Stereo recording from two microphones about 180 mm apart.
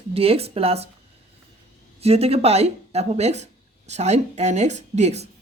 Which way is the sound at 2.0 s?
35° right (ahead or behind).